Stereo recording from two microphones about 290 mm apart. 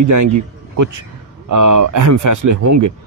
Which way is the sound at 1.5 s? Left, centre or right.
Right.